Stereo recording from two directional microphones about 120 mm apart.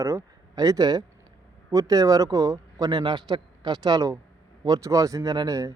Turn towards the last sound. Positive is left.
turn(degrees=-30)  # may be behind; listen again after turning